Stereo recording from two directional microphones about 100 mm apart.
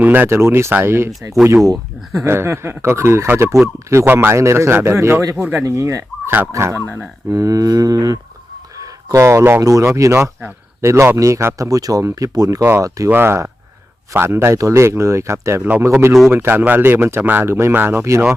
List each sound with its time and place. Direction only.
0.0 s speech: 20° right (ahead or behind)
5.6 s speech: 30° right (ahead or behind)
13.1 s speech: 25° right (ahead or behind)